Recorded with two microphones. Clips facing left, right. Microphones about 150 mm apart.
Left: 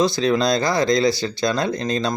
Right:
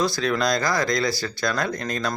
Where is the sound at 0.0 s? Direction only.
25° left (ahead or behind).